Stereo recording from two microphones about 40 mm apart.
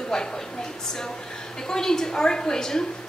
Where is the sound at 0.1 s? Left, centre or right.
Centre.